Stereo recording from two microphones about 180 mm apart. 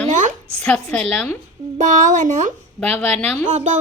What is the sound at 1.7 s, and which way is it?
Speech, 45° right (ahead or behind).